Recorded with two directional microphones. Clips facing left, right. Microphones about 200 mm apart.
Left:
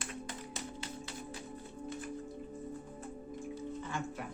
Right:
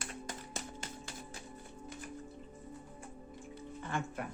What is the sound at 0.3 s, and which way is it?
Music, 45° right (ahead or behind).